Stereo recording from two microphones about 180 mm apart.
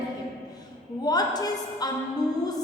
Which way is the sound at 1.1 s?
20° left (ahead or behind).